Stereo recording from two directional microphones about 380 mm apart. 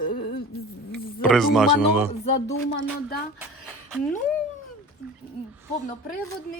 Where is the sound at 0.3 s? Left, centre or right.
Left.